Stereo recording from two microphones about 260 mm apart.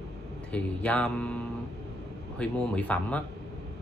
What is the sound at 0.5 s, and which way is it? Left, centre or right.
Speech, centre.